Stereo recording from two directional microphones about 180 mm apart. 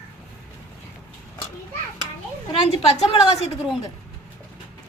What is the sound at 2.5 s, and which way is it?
Speech, 35° left (ahead or behind).